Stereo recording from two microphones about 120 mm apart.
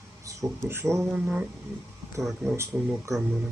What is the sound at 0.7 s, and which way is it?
Speech, 20° right (ahead or behind).